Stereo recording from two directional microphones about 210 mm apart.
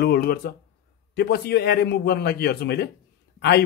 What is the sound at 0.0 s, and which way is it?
Speech, 50° left (ahead or behind).